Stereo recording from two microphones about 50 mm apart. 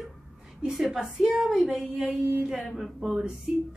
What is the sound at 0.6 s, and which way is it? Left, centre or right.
A woman's voice, centre.